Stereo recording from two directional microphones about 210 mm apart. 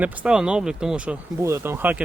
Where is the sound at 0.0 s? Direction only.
5° right (ahead or behind).